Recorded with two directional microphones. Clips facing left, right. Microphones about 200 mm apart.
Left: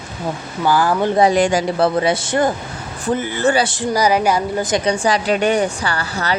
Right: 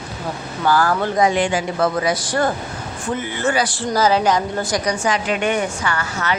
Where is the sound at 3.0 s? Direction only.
35° left (ahead or behind); by 4.7 s 10° left (ahead or behind).